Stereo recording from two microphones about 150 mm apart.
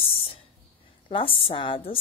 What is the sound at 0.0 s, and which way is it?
Whispering, 40° left (ahead or behind).